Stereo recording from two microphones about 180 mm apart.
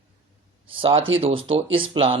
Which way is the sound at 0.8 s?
30° right (ahead or behind).